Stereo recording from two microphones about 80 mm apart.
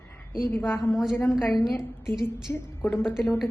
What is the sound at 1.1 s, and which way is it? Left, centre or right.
A woman's voice, left.